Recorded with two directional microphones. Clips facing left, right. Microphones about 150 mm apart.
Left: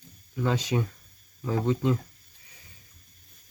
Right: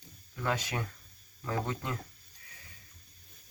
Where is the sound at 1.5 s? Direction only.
20° left (ahead or behind).